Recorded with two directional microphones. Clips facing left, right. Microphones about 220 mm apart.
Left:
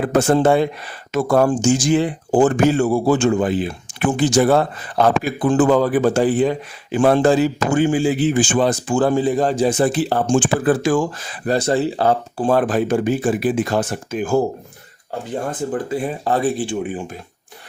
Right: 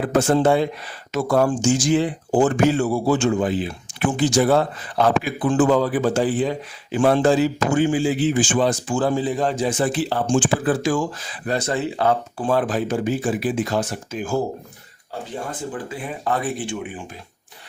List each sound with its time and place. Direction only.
0.1 s speech: 50° left (ahead or behind)
9.4 s speech: 35° left (ahead or behind)
11.4 s speech: 35° left (ahead or behind)
12.5 s speech: 50° left (ahead or behind)
15.7 s speech: 40° left (ahead or behind)